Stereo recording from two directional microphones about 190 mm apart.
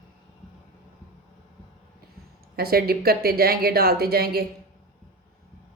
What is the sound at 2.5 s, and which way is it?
A woman's voice, 55° right (ahead or behind).